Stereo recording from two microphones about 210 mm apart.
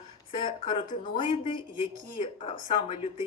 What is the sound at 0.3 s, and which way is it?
Speech, 30° left (ahead or behind).